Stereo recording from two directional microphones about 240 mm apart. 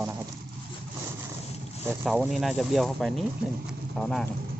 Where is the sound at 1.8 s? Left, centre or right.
Centre.